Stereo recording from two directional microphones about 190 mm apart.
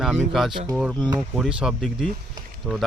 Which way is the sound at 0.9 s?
20° right (ahead or behind).